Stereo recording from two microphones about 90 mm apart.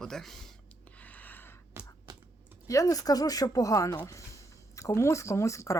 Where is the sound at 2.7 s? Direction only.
40° left (ahead or behind).